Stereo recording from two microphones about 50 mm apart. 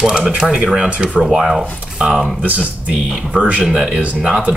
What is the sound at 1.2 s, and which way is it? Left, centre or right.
Speech, centre.